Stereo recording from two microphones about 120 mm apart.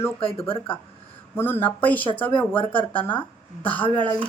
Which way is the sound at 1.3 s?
20° left (ahead or behind).